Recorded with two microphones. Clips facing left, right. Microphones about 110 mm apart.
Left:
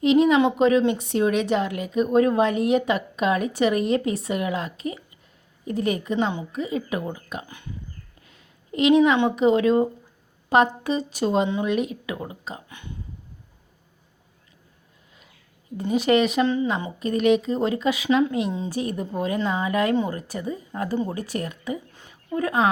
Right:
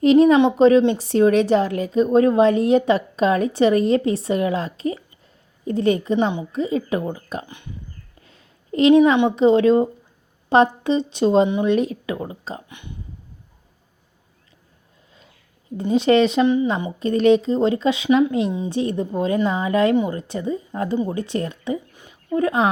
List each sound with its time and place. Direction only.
0.0 s a woman's voice: 40° right (ahead or behind)
0.3 s a woman's voice: 30° right (ahead or behind)
7.4 s speech: 20° right (ahead or behind)
8.2 s a sound: 30° right (ahead or behind)
9.1 s a woman's voice: 25° right (ahead or behind)
15.8 s speech: 25° right (ahead or behind)
21.9 s a sound: 15° right (ahead or behind)
22.4 s speech: 25° right (ahead or behind)